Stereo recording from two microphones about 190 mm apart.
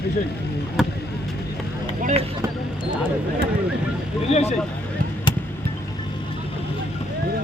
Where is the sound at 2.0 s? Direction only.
40° right (ahead or behind).